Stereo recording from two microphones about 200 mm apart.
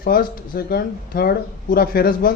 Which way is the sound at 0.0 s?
45° left (ahead or behind).